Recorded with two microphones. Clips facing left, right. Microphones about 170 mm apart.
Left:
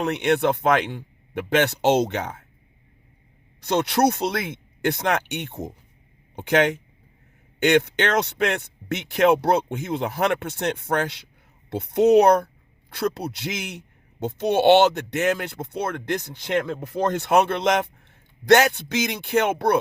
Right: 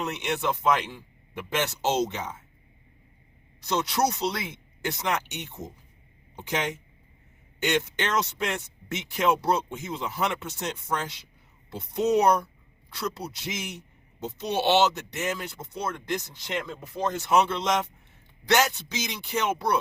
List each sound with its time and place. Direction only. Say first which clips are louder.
0.0 s a man's voice: left 8 dB; 60° left (ahead or behind)
3.6 s a man's voice: left 6 dB; 60° left (ahead or behind)